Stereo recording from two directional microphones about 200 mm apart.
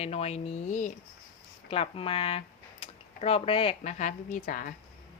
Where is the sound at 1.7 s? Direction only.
30° left (ahead or behind).